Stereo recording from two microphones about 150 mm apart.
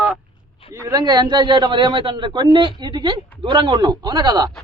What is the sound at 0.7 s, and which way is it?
A man's voice, 20° right (ahead or behind).